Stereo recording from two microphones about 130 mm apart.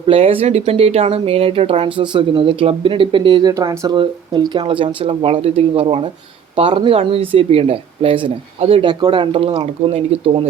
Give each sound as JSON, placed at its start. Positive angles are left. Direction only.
{"t": 0.1, "sound": "speech", "side_deg": -45}
{"t": 3.5, "sound": "speech", "side_deg": -25}